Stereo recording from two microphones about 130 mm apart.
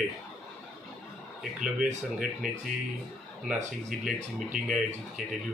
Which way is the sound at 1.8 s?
5° right (ahead or behind).